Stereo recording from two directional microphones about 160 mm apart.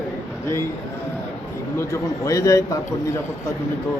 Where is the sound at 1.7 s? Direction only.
20° left (ahead or behind).